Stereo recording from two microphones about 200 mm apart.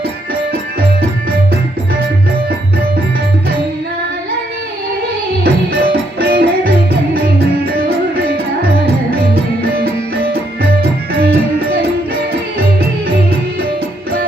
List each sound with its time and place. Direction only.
5.4 s music: 55° right (ahead or behind)
11.1 s music: 50° right (ahead or behind)